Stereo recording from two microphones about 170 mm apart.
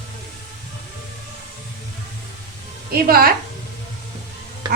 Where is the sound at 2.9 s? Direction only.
60° right (ahead or behind).